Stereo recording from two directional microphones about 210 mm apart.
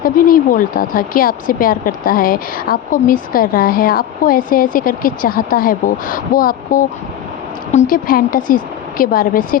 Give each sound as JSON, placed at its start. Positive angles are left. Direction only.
{"t": 0.0, "sound": "a woman's voice", "side_deg": 40}